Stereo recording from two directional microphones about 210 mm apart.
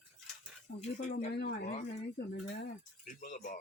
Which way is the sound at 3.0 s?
40° left (ahead or behind).